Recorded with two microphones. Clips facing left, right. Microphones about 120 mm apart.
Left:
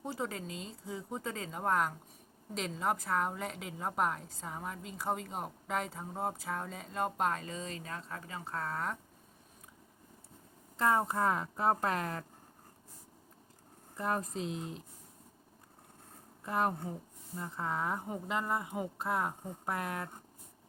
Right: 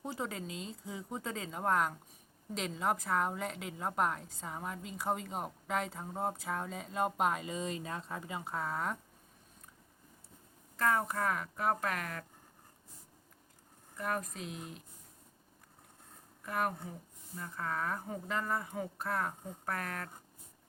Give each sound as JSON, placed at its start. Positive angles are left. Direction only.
{"t": 0.0, "sound": "a woman's voice", "side_deg": 0}
{"t": 10.8, "sound": "speech", "side_deg": 25}
{"t": 13.9, "sound": "speech", "side_deg": 30}
{"t": 16.4, "sound": "speech", "side_deg": 25}